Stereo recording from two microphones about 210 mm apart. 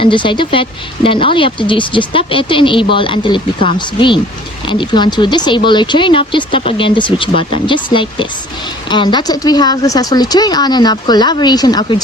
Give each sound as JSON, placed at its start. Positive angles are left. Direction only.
{"t": 0.0, "sound": "speech", "side_deg": 25}